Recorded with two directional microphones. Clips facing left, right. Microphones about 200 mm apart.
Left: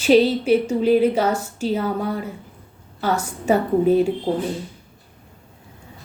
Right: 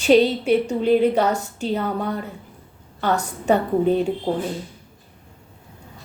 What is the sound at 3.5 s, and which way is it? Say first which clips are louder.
Speech: left 2 dB; 5° left (ahead or behind).